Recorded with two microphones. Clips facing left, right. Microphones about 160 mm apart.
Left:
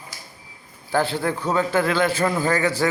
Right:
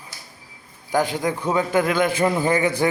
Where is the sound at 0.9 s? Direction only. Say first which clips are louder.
Right 1 dB; 15° right (ahead or behind).